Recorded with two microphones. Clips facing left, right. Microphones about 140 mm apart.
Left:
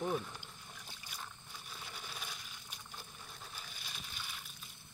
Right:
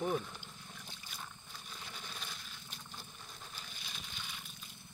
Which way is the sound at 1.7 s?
5° left (ahead or behind).